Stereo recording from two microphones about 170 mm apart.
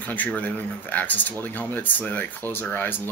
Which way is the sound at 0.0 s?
10° left (ahead or behind).